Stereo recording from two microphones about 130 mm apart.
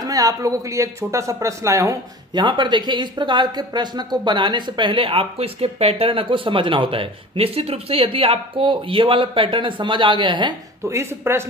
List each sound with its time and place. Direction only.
0.0 s speech: 25° right (ahead or behind)
2.4 s speech: 35° right (ahead or behind)
10.9 s speech: 20° right (ahead or behind)